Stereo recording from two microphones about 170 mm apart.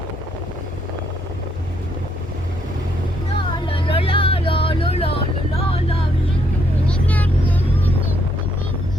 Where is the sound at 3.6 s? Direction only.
30° left (ahead or behind).